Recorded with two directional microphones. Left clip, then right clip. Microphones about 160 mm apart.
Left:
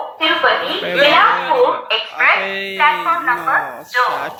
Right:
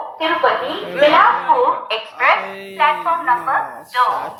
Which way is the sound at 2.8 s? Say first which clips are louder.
Left 1 dB; 20° right (ahead or behind).